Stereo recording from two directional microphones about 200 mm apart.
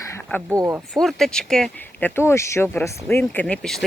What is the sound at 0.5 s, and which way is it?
Speech, 15° right (ahead or behind).